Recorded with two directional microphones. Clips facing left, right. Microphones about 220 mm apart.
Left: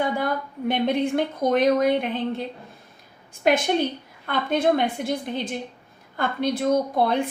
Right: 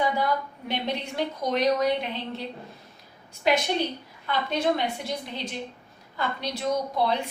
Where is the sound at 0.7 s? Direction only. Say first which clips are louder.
Left 9 dB; 50° left (ahead or behind).